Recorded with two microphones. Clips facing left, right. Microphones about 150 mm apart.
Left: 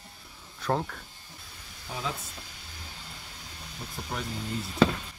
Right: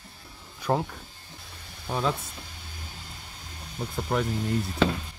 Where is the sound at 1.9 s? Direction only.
65° right (ahead or behind).